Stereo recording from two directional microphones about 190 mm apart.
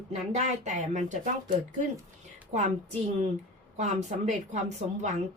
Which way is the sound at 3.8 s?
40° right (ahead or behind).